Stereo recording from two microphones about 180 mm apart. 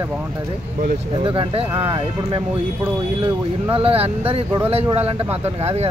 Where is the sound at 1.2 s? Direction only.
30° right (ahead or behind).